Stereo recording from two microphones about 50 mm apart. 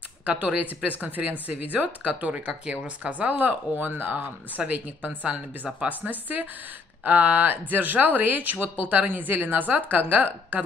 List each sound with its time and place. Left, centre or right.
0.2 s speech: right